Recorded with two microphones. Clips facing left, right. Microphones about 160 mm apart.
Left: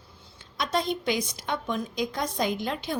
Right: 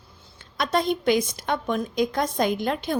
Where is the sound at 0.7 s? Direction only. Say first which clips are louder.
Right 6 dB; 55° right (ahead or behind).